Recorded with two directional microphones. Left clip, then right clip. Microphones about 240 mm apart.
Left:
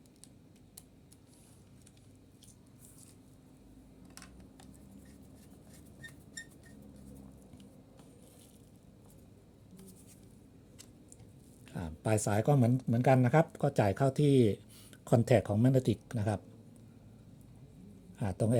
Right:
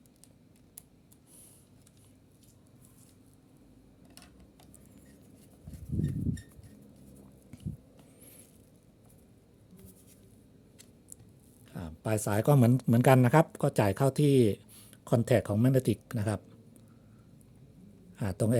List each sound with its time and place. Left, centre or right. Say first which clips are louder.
11.7 s speech: even; centre
18.1 s speech: right 2 dB; centre